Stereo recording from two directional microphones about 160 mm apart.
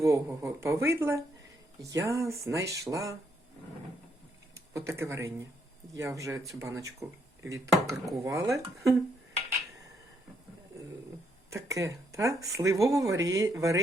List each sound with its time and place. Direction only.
0.0 s speech: 15° right (ahead or behind)
4.5 s speech: 15° right (ahead or behind)
11.5 s speech: 20° right (ahead or behind)